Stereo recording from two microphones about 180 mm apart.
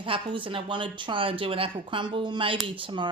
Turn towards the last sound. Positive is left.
turn(degrees=-25)  # may be behind; listen again after turning